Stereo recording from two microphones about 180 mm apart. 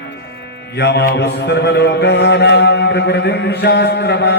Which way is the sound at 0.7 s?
70° left (ahead or behind).